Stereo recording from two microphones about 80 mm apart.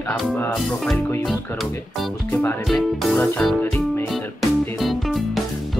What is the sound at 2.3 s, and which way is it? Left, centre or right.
Speech, left.